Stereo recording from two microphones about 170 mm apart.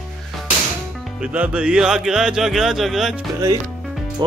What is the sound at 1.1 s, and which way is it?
Speech, 5° right (ahead or behind).